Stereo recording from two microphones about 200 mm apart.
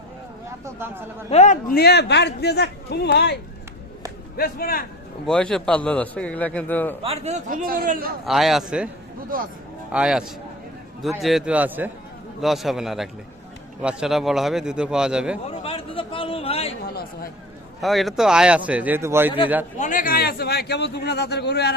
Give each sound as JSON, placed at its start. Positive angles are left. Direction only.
{"t": 0.6, "sound": "speech", "side_deg": -10}
{"t": 1.3, "sound": "a man's voice", "side_deg": 35}
{"t": 4.4, "sound": "speech", "side_deg": 50}
{"t": 5.2, "sound": "a man's voice", "side_deg": 5}
{"t": 7.0, "sound": "a man's voice", "side_deg": -30}
{"t": 8.2, "sound": "a man's voice", "side_deg": 0}
{"t": 9.3, "sound": "a man's voice", "side_deg": -45}
{"t": 9.9, "sound": "a man's voice", "side_deg": -5}
{"t": 15.4, "sound": "a man's voice", "side_deg": 30}
{"t": 16.8, "sound": "speech", "side_deg": 50}
{"t": 17.7, "sound": "speech", "side_deg": 0}
{"t": 19.8, "sound": "a man's voice", "side_deg": 40}